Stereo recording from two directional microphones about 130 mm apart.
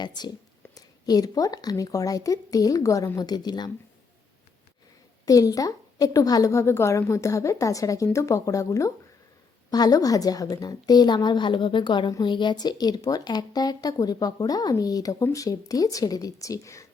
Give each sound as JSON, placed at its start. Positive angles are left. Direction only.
{"t": 0.0, "sound": "a woman's voice", "side_deg": 35}
{"t": 5.2, "sound": "a woman's voice", "side_deg": 30}